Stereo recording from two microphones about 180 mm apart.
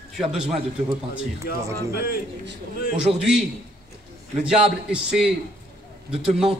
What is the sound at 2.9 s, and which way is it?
A man's voice, 5° right (ahead or behind).